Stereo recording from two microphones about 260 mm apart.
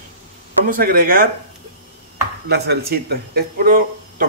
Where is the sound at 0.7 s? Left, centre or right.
Right.